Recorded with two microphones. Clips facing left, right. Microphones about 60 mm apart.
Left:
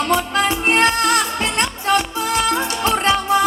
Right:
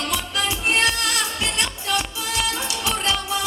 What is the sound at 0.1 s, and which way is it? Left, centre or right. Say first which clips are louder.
Music: left 8 dB; left.